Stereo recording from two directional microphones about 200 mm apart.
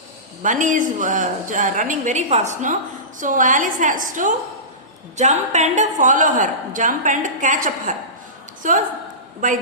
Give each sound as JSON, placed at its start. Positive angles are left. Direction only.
{"t": 0.4, "sound": "a woman's voice", "side_deg": -40}